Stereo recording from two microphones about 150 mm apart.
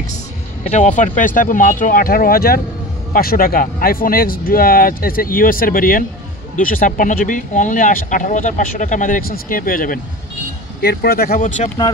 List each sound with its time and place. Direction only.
0.7 s speech: 50° left (ahead or behind); by 9.9 s 70° left (ahead or behind)
10.8 s speech: 90° left; by 11.7 s 55° left (ahead or behind)